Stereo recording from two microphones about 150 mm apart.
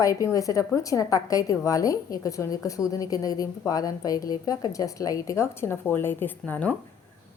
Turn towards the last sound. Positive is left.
turn(degrees=10)  # may be behind; listen again after turning